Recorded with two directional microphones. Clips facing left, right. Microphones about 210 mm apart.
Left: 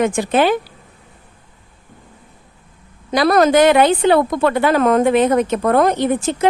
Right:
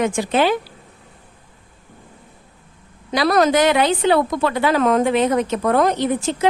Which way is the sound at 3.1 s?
50° left (ahead or behind).